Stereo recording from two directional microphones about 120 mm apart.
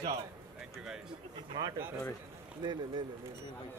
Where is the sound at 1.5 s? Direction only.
35° right (ahead or behind).